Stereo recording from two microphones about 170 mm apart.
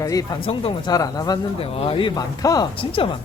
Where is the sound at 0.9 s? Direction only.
20° left (ahead or behind).